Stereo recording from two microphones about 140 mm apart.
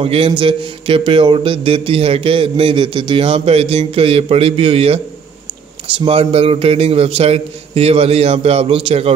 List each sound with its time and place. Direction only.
0.0 s a man's voice: 40° right (ahead or behind)